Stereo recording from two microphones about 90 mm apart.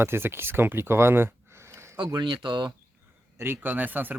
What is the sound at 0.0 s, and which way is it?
Speech, 25° right (ahead or behind).